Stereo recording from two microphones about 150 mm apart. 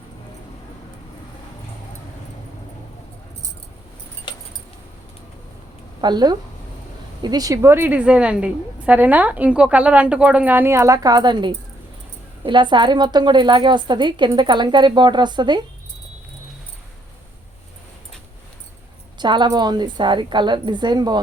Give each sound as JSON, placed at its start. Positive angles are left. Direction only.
{"t": 6.0, "sound": "a woman's voice", "side_deg": -30}
{"t": 19.2, "sound": "a woman's voice", "side_deg": -30}